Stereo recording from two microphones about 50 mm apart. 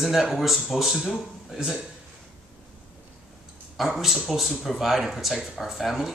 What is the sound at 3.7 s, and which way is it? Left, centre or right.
Speech, centre.